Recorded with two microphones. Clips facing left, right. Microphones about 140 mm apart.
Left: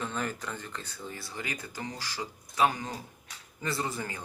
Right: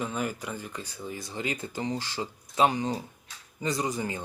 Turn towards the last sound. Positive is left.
turn(degrees=-20)  # may be behind; listen again after turning